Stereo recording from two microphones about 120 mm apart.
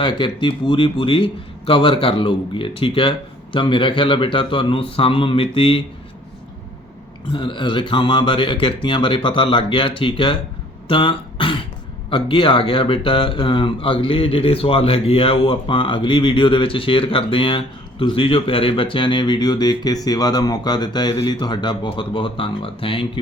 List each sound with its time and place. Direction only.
0.0 s a man's voice: 40° left (ahead or behind)
7.3 s a man's voice: 40° left (ahead or behind)